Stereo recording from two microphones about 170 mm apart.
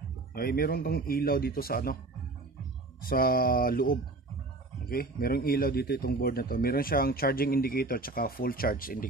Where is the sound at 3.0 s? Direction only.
60° left (ahead or behind).